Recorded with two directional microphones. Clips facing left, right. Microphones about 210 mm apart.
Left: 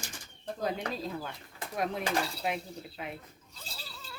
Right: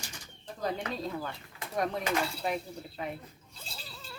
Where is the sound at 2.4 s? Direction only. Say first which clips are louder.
Right 2 dB; 5° left (ahead or behind).